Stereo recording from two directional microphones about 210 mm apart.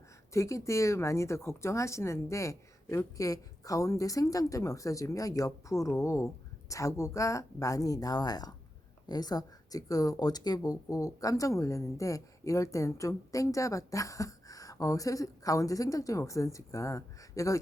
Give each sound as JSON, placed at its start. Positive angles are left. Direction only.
{"t": 0.3, "sound": "speech", "side_deg": 15}